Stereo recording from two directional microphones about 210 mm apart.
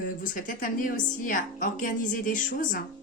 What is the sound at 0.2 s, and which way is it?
A woman's voice, 40° left (ahead or behind).